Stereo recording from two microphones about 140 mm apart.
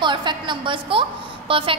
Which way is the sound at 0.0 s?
35° right (ahead or behind).